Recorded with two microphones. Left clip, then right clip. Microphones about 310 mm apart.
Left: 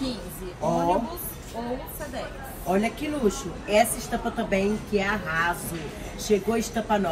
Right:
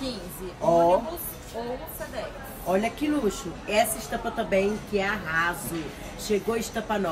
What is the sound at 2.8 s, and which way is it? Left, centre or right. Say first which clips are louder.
A woman's voice: even; centre.